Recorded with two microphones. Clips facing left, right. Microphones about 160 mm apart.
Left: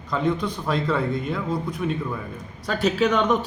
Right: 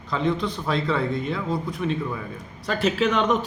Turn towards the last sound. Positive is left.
turn(degrees=0)  # may be behind; listen again after turning